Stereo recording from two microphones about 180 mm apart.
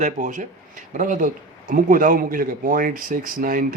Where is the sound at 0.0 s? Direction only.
45° right (ahead or behind).